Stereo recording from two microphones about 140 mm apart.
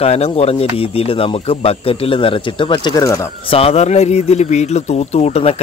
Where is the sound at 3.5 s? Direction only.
45° left (ahead or behind).